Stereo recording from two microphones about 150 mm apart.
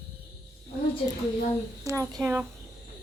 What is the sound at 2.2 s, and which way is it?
Speech, 10° right (ahead or behind).